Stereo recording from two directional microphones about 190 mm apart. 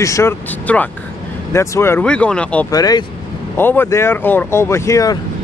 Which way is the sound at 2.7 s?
20° left (ahead or behind).